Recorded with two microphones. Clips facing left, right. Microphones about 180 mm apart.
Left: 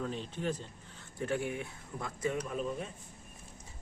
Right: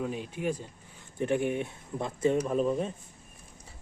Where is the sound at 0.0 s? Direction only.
10° right (ahead or behind).